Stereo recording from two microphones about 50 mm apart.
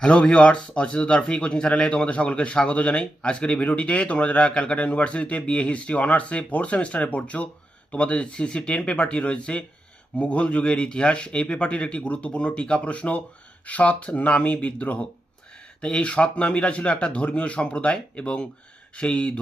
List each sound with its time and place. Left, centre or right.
0.0 s speech: left